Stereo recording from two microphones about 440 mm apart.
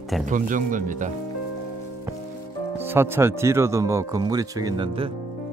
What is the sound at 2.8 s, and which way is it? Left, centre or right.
Speech, centre.